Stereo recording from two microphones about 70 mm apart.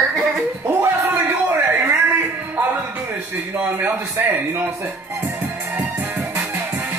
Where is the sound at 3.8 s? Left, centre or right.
Right.